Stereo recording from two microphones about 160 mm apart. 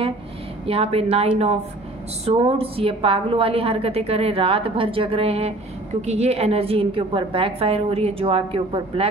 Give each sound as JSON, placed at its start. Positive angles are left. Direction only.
{"t": 0.7, "sound": "a woman's voice", "side_deg": -35}
{"t": 2.2, "sound": "a woman's voice", "side_deg": -35}